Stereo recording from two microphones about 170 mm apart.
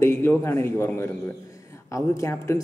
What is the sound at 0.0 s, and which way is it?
A man's voice, 15° left (ahead or behind).